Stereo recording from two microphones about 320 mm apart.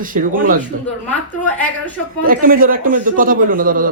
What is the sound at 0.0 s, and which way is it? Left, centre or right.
Speech, right.